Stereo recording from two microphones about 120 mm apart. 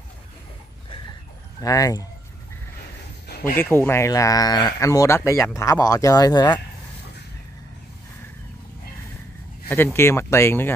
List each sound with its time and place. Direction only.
1.6 s speech: 30° left (ahead or behind)
3.5 s speech: 15° left (ahead or behind); by 6.6 s 35° left (ahead or behind)
9.9 s speech: 20° left (ahead or behind)